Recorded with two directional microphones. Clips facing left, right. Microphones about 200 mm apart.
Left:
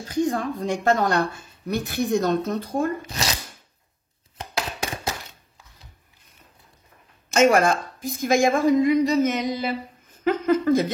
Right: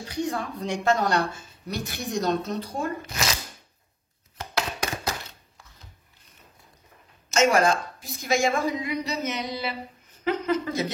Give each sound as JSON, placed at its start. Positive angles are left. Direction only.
{"t": 0.0, "sound": "speech", "side_deg": 50}
{"t": 3.1, "sound": "speech", "side_deg": 35}
{"t": 7.3, "sound": "speech", "side_deg": 55}